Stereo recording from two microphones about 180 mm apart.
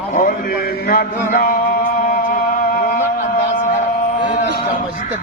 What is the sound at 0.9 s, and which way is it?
Male singing, 55° left (ahead or behind).